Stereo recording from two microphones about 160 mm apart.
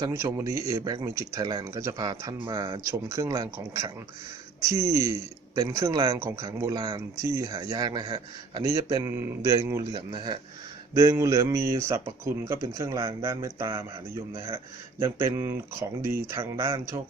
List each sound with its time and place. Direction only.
0.0 s speech: 20° right (ahead or behind)